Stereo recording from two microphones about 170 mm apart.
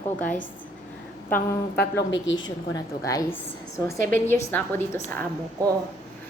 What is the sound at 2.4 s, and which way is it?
Speech, 20° left (ahead or behind).